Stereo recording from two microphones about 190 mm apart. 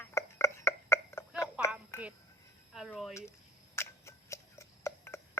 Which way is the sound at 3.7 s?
15° left (ahead or behind).